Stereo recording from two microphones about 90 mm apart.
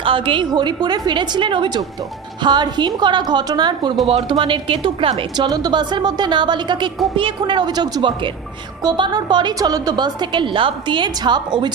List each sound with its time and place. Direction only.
0.0 s a woman's voice: 80° right
0.4 s a woman's voice: 55° right (ahead or behind)
4.0 s speech: 85° right
5.4 s a woman's voice: 45° right (ahead or behind)
9.6 s a woman's voice: 45° right (ahead or behind)